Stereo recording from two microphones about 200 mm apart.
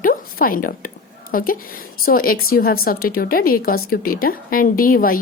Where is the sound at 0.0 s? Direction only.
45° left (ahead or behind).